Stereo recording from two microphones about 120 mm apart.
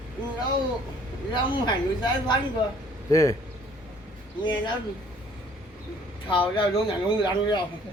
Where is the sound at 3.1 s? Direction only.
30° left (ahead or behind).